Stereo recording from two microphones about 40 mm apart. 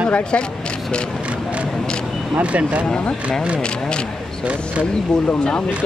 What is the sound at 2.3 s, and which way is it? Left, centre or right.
Speech, right.